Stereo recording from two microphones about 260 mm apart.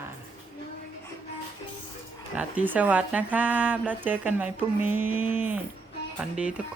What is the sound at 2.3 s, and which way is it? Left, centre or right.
Speech, centre.